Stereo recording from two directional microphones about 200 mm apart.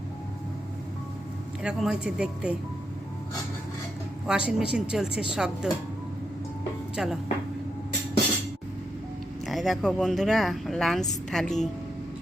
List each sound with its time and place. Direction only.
1.6 s speech: 5° right (ahead or behind)
4.3 s speech: 5° right (ahead or behind)
6.9 s speech: 5° right (ahead or behind)
9.5 s speech: centre (ahead or behind)